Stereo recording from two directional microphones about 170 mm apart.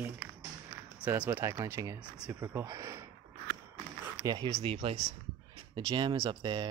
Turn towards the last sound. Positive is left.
turn(degrees=-25)  # may be behind; listen again after turning